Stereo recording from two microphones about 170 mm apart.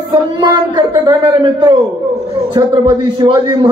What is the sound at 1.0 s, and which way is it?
Speech, 25° right (ahead or behind).